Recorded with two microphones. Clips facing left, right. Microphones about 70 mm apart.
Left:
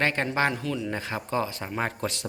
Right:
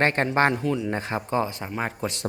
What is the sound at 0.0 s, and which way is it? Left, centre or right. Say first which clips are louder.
Speech: right 4 dB; right.